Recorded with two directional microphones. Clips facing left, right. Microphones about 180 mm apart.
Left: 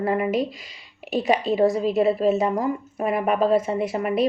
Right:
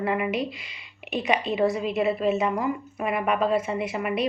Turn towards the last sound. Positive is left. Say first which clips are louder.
# left 4 dB
turn(degrees=40)  # may be behind; listen again after turning